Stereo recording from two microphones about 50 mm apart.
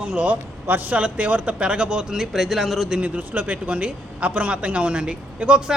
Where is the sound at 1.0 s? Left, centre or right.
Right; by 2.9 s centre.